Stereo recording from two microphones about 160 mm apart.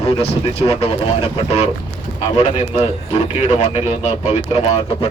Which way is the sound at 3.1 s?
45° left (ahead or behind).